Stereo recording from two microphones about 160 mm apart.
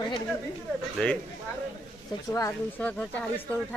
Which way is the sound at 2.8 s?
10° left (ahead or behind).